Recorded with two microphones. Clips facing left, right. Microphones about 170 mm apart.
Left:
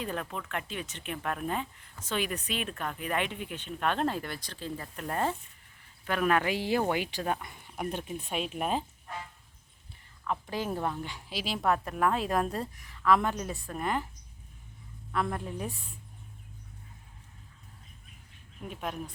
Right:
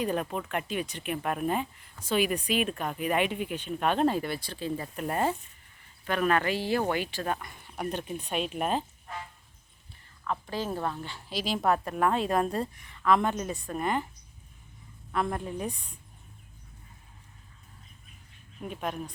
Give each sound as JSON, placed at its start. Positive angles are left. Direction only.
{"t": 0.0, "sound": "speech", "side_deg": -15}
{"t": 6.1, "sound": "speech", "side_deg": 5}
{"t": 7.8, "sound": "a woman's voice", "side_deg": 5}
{"t": 10.2, "sound": "a woman's voice", "side_deg": 15}
{"t": 15.1, "sound": "a woman's voice", "side_deg": 0}
{"t": 18.7, "sound": "a woman's voice", "side_deg": 0}